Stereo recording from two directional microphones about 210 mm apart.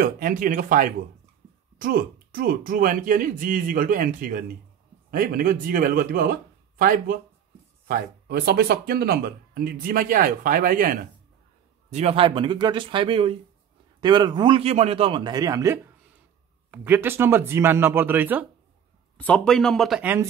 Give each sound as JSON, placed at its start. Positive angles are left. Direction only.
{"t": 0.0, "sound": "speech", "side_deg": -40}
{"t": 11.9, "sound": "a man's voice", "side_deg": -30}
{"t": 19.1, "sound": "speech", "side_deg": 5}